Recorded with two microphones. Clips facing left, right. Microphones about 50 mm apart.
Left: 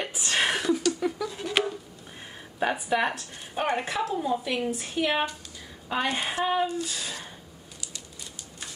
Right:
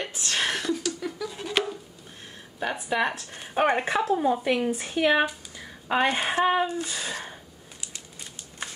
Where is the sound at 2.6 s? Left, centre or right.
Centre.